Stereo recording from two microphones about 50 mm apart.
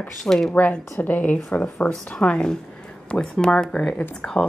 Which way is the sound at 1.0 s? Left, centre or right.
Left.